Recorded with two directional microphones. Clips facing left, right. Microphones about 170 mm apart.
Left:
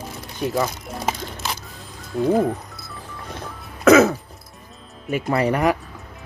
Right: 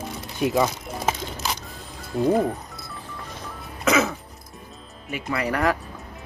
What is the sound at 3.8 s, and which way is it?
Throat clearing, 45° left (ahead or behind).